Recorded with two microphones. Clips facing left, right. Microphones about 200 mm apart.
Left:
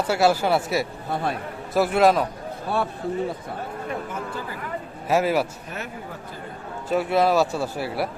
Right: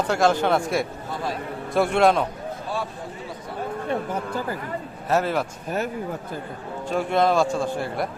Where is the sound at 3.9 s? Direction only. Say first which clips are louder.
Right 5 dB; 40° right (ahead or behind).